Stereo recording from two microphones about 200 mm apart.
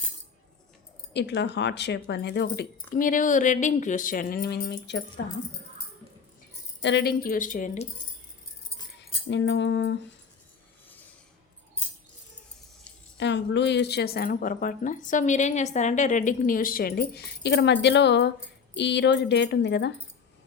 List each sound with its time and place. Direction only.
1.1 s speech: 60° left (ahead or behind)
6.8 s speech: 55° left (ahead or behind); by 7.9 s 40° left (ahead or behind)
9.0 s a sound: 65° left (ahead or behind)
13.1 s speech: 60° left (ahead or behind)